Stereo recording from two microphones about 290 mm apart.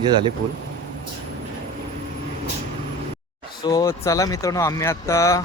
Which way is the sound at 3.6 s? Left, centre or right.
Centre.